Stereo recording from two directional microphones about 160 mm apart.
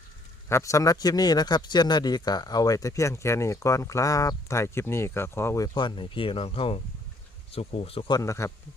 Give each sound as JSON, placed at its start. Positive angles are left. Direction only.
{"t": 0.4, "sound": "a man's voice", "side_deg": 20}